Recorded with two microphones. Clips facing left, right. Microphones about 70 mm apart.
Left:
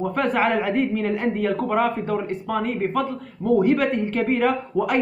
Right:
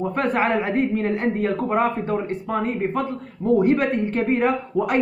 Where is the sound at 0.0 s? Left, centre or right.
Centre.